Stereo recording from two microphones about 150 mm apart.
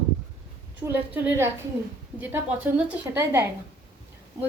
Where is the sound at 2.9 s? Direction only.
15° right (ahead or behind).